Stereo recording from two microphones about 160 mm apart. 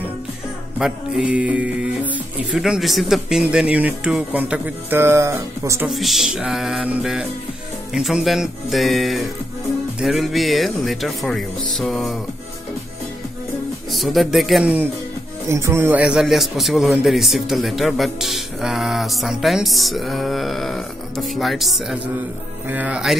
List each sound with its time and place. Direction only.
0.7 s music: 5° right (ahead or behind)
5.9 s a man's voice: centre (ahead or behind)
13.9 s a man's voice: centre (ahead or behind)
22.7 s music: 10° right (ahead or behind)